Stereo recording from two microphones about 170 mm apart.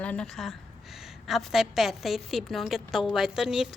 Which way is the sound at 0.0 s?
5° left (ahead or behind).